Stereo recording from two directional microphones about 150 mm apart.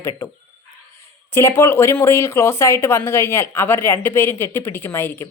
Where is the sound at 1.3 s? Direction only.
15° left (ahead or behind).